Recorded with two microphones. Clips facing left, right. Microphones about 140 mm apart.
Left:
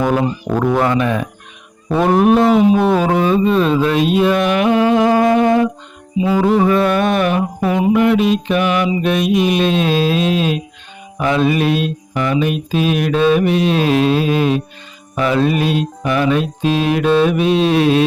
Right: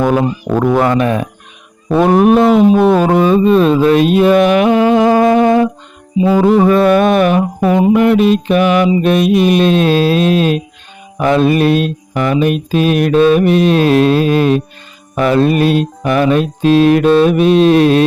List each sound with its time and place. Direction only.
0.7 s mantra: 50° right (ahead or behind)